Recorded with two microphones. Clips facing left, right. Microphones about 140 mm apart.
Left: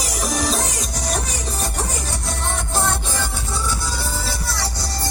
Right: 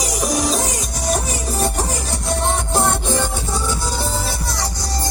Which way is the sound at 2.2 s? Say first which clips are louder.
Right 9 dB; 15° right (ahead or behind).